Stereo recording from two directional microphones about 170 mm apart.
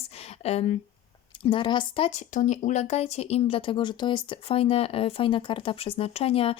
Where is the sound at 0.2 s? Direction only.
35° left (ahead or behind).